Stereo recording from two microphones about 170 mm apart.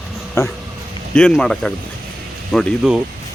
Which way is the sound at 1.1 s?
5° left (ahead or behind).